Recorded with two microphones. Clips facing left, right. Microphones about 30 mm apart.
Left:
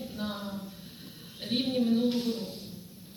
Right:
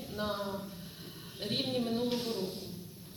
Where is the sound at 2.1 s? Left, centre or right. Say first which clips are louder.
Left 4 dB; right.